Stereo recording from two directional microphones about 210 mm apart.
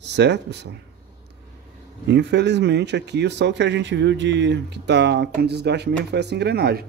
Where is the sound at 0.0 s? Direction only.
55° right (ahead or behind).